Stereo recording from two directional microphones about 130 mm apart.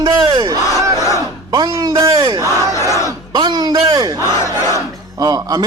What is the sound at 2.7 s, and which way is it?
Battle cry, 25° left (ahead or behind).